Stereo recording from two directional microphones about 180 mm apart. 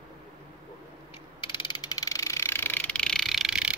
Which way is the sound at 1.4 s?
25° left (ahead or behind).